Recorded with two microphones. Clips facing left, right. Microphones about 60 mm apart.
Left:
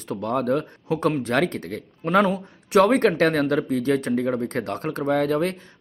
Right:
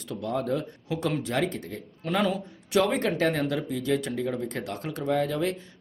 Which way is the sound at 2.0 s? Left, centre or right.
Left.